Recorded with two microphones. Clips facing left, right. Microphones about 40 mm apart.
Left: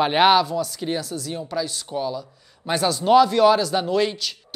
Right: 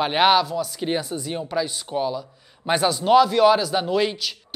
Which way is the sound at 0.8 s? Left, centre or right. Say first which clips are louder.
Right 1 dB; centre.